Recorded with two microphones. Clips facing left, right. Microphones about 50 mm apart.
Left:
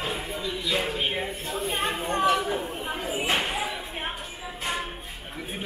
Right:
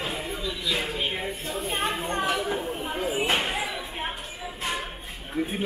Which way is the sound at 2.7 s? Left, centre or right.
Left.